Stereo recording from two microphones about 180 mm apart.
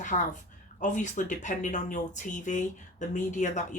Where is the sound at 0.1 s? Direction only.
40° left (ahead or behind).